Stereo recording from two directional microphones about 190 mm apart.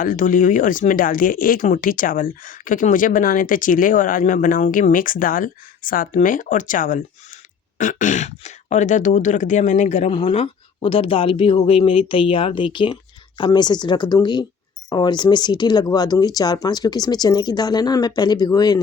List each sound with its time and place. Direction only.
0.0 s speech: 45° left (ahead or behind); by 18.8 s 20° left (ahead or behind)